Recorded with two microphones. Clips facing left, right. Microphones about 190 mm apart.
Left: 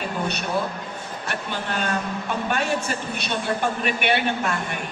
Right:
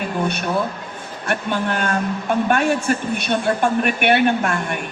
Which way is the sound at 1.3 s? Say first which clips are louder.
Right 8 dB; 55° right (ahead or behind).